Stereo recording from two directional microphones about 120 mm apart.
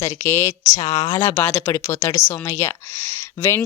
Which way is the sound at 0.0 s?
20° left (ahead or behind).